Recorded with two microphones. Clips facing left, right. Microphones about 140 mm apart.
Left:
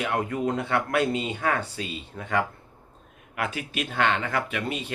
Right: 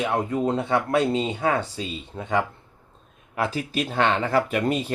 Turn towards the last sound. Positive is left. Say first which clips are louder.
# right 7 dB
turn(degrees=-40)  # may be behind; listen again after turning